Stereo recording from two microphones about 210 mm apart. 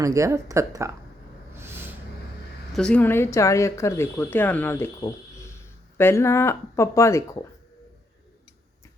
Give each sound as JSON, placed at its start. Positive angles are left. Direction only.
{"t": 0.0, "sound": "speech", "side_deg": -15}
{"t": 1.5, "sound": "a sound", "side_deg": -10}
{"t": 2.7, "sound": "speech", "side_deg": 5}